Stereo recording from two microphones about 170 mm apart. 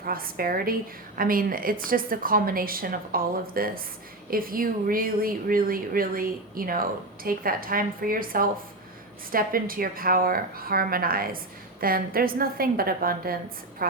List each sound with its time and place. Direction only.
0.0 s a woman's voice: 60° right (ahead or behind)